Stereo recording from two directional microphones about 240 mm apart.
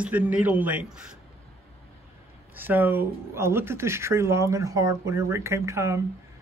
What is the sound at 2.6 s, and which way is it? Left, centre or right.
Speech, centre.